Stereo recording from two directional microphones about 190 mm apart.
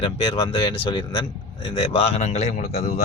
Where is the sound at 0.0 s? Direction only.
30° left (ahead or behind).